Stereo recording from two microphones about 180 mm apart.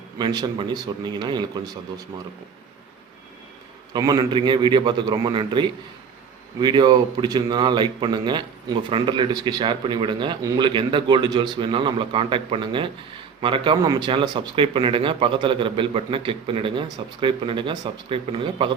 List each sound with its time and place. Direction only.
0.2 s speech: 25° right (ahead or behind)
3.9 s speech: 25° right (ahead or behind)